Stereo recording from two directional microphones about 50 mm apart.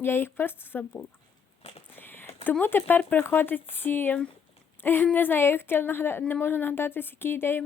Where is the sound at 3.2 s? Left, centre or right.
Left.